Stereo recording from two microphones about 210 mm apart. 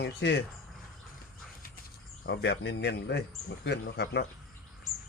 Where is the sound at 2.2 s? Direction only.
50° left (ahead or behind).